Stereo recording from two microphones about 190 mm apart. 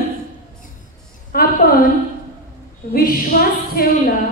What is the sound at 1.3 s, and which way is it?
Speech, 50° left (ahead or behind).